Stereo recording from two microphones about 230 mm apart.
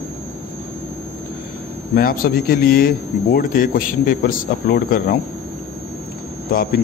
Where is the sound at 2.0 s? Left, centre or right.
Left.